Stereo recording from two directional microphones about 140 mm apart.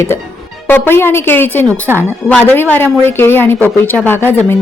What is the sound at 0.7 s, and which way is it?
A woman's voice, 15° left (ahead or behind).